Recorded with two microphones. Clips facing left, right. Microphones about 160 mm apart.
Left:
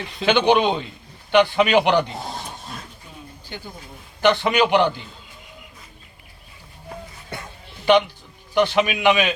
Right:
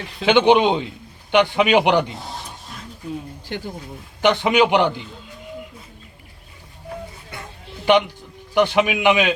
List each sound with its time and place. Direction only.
0.3 s a man's voice: 15° right (ahead or behind)
3.5 s speech: 90° right
4.2 s a man's voice: 15° right (ahead or behind)
8.5 s a man's voice: 15° right (ahead or behind)